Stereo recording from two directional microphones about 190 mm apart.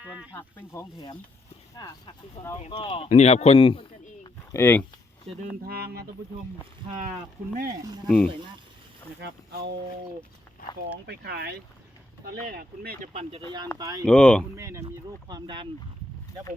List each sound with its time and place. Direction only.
0.3 s speech: 15° left (ahead or behind)
2.6 s speech: 30° left (ahead or behind)
4.5 s speech: 10° left (ahead or behind)
5.6 s speech: 55° right (ahead or behind)
8.0 s speech: 5° left (ahead or behind)
9.2 s speech: 55° right (ahead or behind)
11.0 s speech: 60° right (ahead or behind)
13.7 s speech: 20° right (ahead or behind)
14.0 s speech: 5° left (ahead or behind)
14.5 s speech: 15° right (ahead or behind)